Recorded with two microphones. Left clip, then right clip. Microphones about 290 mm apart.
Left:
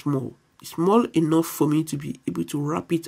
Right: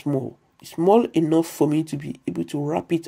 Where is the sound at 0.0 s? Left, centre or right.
Left.